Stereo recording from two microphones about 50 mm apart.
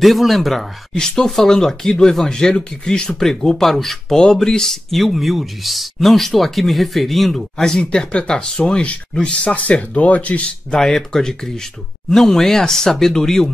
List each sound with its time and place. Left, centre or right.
0.0 s speech: centre
0.9 s speech: centre; by 10.5 s left
10.7 s speech: centre